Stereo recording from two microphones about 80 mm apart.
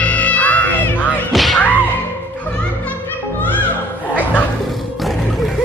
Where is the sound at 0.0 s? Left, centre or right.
Centre.